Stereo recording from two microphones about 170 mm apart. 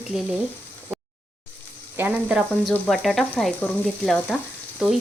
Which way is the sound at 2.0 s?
10° right (ahead or behind).